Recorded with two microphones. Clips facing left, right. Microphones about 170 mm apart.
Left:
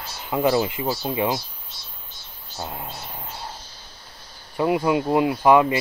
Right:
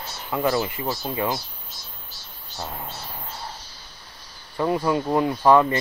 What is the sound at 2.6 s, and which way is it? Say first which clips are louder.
Speech: left 1 dB; 15° left (ahead or behind).